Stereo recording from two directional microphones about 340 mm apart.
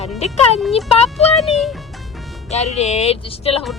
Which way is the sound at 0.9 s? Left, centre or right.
Centre.